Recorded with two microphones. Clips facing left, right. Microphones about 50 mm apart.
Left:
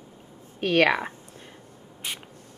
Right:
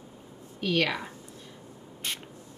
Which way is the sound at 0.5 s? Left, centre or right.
Left.